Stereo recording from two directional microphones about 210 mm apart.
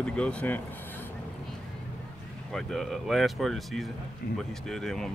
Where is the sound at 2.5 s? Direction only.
Centre (ahead or behind).